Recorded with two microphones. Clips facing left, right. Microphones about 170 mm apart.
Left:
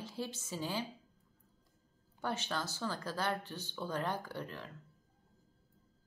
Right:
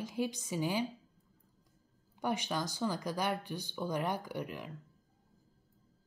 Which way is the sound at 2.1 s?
15° right (ahead or behind).